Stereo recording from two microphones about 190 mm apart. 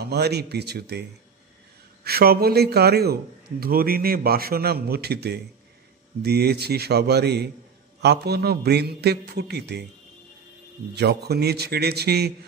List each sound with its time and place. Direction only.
0.0 s a man's voice: 60° right (ahead or behind)
2.0 s a man's voice: 55° right (ahead or behind)
11.0 s a man's voice: 60° right (ahead or behind)